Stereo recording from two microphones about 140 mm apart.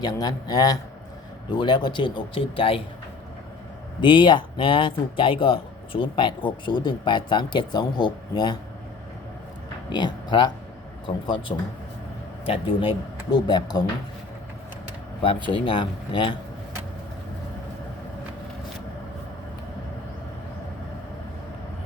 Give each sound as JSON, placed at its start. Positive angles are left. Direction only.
{"t": 0.0, "sound": "a man's voice", "side_deg": 30}
{"t": 4.0, "sound": "speech", "side_deg": 35}
{"t": 9.9, "sound": "a man's voice", "side_deg": 30}
{"t": 15.5, "sound": "speech", "side_deg": 35}